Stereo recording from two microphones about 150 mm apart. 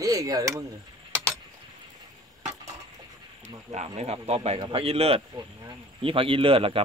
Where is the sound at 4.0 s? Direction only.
45° right (ahead or behind).